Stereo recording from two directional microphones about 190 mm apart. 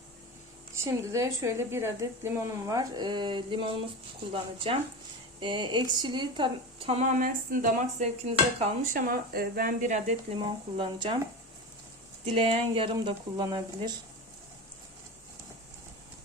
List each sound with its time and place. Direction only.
0.9 s a woman's voice: 15° right (ahead or behind); by 10.4 s 40° right (ahead or behind)
10.4 s speech: 25° right (ahead or behind)
12.2 s speech: 30° right (ahead or behind)